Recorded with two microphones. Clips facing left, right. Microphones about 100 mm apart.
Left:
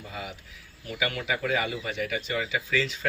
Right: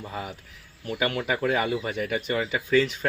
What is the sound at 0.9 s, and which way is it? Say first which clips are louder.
Speech: right 3 dB; 40° right (ahead or behind).